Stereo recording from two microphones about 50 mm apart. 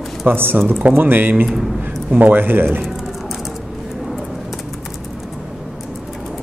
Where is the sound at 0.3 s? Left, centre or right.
Right.